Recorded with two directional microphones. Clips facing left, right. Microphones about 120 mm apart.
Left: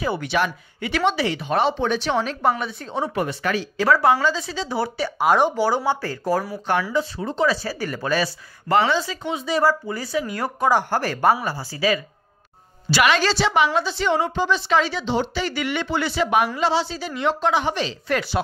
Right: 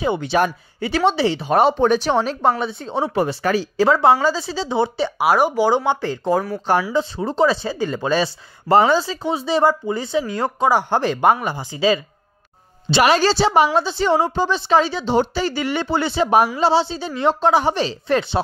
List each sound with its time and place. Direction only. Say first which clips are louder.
0.0 s speech: right 4 dB; 25° right (ahead or behind)
5.2 s speech: right 1 dB; 10° right (ahead or behind)
5.9 s speech: right 3 dB; 20° right (ahead or behind)
13.0 s speech: right 4 dB; 35° right (ahead or behind)